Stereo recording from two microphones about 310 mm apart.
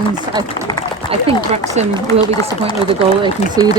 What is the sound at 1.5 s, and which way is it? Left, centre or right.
Speech, centre.